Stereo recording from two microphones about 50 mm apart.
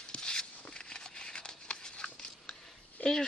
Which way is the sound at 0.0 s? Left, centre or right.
Centre.